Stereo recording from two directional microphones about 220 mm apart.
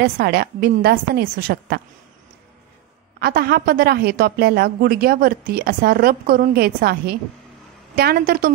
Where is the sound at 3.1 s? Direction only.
45° right (ahead or behind).